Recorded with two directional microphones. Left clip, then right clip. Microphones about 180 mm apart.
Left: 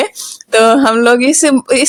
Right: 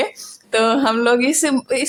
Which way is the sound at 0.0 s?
35° left (ahead or behind).